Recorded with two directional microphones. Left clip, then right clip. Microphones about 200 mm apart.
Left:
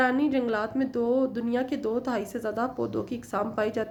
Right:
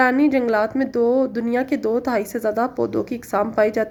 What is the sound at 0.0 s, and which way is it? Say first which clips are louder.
Speech: right 8 dB; 35° right (ahead or behind).